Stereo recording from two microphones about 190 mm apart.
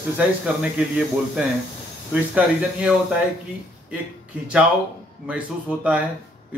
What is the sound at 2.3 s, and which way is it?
Speech, 5° right (ahead or behind).